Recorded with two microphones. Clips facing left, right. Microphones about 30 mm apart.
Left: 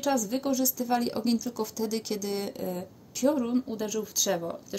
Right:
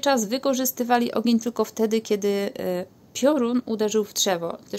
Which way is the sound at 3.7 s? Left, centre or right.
Right.